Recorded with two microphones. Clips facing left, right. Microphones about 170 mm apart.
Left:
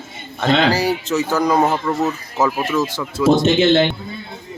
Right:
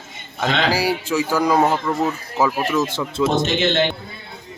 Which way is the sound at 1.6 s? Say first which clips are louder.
Left 1 dB; 5° left (ahead or behind).